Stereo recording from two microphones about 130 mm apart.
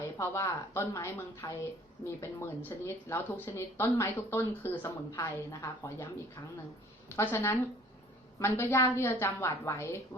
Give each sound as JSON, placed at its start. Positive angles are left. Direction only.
{"t": 0.2, "sound": "speech", "side_deg": 20}
{"t": 7.2, "sound": "a woman's voice", "side_deg": 15}